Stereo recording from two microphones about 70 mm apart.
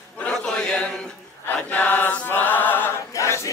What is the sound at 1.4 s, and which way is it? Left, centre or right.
Choir, left.